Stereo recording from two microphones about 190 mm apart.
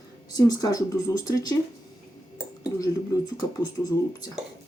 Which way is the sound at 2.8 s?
20° left (ahead or behind).